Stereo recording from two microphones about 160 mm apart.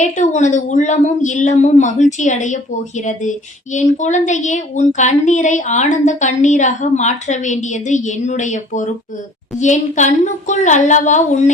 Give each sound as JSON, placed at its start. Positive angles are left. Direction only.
{"t": 0.0, "sound": "a woman's voice", "side_deg": 50}